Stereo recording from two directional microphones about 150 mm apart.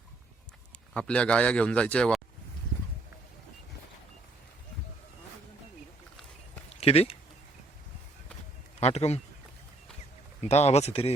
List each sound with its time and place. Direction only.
0.9 s a man's voice: 5° left (ahead or behind)
6.7 s a sound: 45° left (ahead or behind)
8.8 s speech: 45° left (ahead or behind)
10.4 s speech: 45° left (ahead or behind)